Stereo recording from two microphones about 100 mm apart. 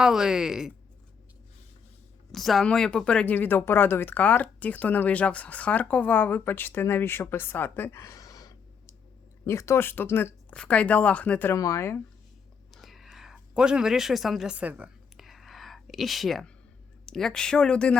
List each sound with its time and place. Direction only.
0.0 s speech: 5° right (ahead or behind)
2.3 s speech: centre (ahead or behind); by 10.3 s 20° left (ahead or behind)
10.5 s speech: 10° left (ahead or behind)
11.5 s speech: 35° left (ahead or behind)
12.7 s a sound: centre (ahead or behind)
15.2 s whispering: centre (ahead or behind)
17.1 s speech: 5° left (ahead or behind)